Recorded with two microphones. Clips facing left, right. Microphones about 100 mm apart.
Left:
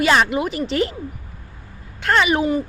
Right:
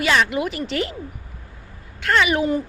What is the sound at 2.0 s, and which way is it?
Speech, 35° left (ahead or behind).